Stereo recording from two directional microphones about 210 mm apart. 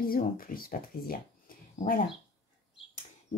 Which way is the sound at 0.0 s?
45° left (ahead or behind).